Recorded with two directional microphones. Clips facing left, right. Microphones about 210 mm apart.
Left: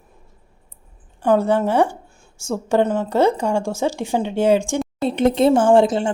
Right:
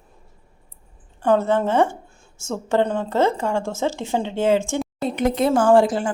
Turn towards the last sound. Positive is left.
turn(degrees=25)  # may be behind; listen again after turning